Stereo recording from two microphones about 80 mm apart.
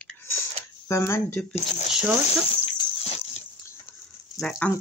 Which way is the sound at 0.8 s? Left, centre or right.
Left.